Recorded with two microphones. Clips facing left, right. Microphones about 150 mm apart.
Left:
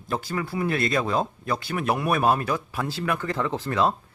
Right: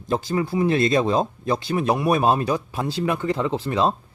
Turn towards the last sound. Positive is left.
turn(degrees=-15)  # may be behind; listen again after turning